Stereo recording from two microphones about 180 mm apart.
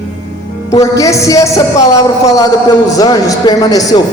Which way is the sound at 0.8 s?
15° left (ahead or behind).